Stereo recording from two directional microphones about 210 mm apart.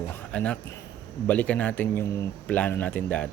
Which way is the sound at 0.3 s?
5° left (ahead or behind).